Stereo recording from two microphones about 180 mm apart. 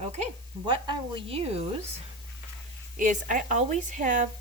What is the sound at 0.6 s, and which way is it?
Speech, 25° right (ahead or behind).